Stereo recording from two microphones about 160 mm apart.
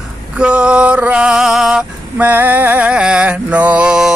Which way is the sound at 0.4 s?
5° right (ahead or behind).